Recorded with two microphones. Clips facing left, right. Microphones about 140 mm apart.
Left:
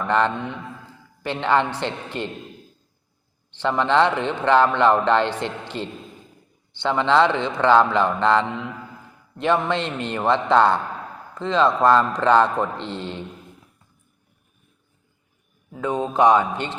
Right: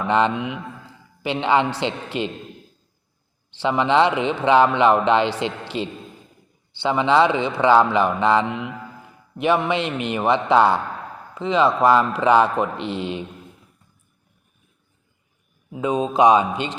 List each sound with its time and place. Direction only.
0.0 s a man's voice: 15° right (ahead or behind)
3.6 s a man's voice: 15° right (ahead or behind)
5.7 s a man's voice: 90° right
6.7 s a man's voice: 10° right (ahead or behind)
15.7 s a man's voice: 15° right (ahead or behind)